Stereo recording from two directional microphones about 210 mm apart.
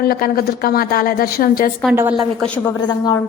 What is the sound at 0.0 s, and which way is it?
A woman's voice, 45° left (ahead or behind).